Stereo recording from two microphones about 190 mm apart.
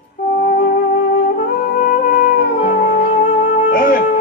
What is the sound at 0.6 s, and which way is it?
Music, 50° left (ahead or behind).